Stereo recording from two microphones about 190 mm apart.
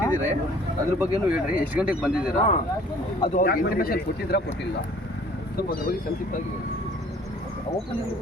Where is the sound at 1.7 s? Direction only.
5° right (ahead or behind).